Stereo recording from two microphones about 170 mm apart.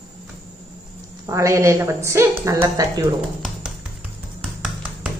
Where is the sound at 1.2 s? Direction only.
20° right (ahead or behind).